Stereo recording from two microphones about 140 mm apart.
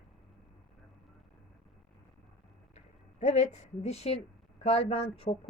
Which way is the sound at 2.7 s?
55° left (ahead or behind).